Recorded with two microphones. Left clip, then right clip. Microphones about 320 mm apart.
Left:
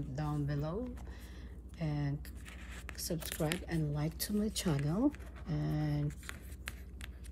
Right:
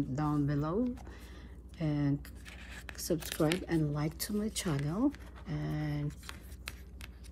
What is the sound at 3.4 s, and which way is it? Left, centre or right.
Speech, right.